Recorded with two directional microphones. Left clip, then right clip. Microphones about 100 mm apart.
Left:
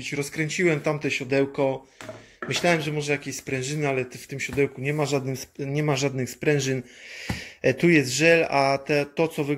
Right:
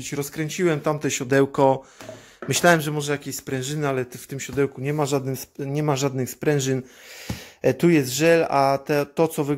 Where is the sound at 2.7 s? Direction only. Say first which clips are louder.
Right 4 dB; 90° right.